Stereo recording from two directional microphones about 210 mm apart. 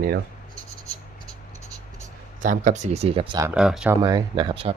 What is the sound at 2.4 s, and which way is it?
Speech, 35° right (ahead or behind).